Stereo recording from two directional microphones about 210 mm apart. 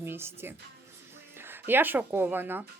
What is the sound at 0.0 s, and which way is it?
Speech, 10° right (ahead or behind).